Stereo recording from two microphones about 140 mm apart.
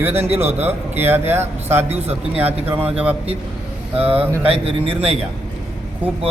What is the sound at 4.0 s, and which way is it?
Mantra, 45° right (ahead or behind).